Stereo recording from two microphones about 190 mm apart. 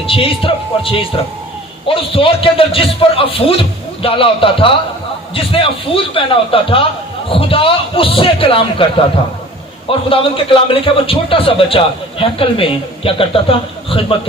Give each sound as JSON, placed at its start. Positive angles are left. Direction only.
{"t": 0.1, "sound": "a man's voice", "side_deg": 30}
{"t": 1.9, "sound": "a man's voice", "side_deg": 30}
{"t": 10.1, "sound": "a man's voice", "side_deg": 30}